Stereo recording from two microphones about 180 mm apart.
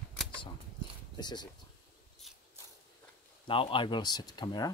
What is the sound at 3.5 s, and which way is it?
Speech, 30° left (ahead or behind).